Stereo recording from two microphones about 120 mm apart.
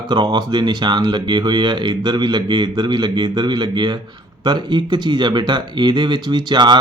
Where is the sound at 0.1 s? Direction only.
35° right (ahead or behind).